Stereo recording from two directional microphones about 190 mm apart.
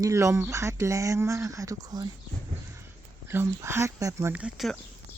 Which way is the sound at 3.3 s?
15° right (ahead or behind).